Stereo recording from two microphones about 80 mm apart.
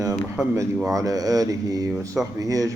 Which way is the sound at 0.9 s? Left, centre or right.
Right.